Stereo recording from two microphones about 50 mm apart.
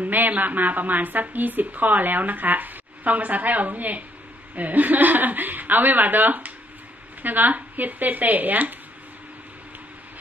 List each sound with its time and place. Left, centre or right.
0.0 s a woman's voice: right